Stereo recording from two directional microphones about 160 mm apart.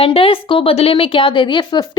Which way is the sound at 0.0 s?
35° left (ahead or behind).